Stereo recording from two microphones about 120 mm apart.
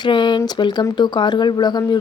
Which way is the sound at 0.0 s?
40° left (ahead or behind).